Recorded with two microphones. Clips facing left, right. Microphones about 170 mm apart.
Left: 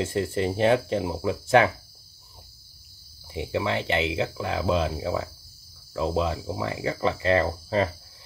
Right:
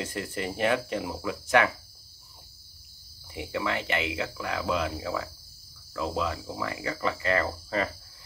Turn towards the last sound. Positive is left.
turn(degrees=25)  # may be behind; listen again after turning